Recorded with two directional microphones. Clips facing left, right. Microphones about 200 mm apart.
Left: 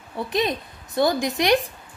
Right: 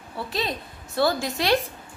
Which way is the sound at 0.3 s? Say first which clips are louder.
Left 6 dB; 20° left (ahead or behind).